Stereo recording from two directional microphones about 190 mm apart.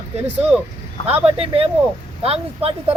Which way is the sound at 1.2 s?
30° right (ahead or behind).